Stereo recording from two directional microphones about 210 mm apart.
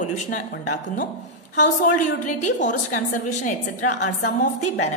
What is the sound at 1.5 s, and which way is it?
A woman's voice, 40° left (ahead or behind).